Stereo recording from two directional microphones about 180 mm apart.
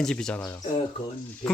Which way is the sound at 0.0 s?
5° left (ahead or behind).